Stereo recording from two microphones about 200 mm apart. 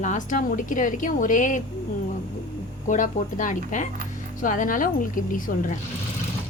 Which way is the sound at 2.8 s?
40° left (ahead or behind).